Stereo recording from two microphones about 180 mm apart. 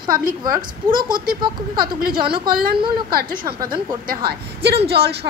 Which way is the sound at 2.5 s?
55° right (ahead or behind).